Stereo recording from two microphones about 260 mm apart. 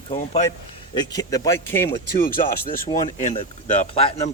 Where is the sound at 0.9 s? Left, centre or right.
Centre.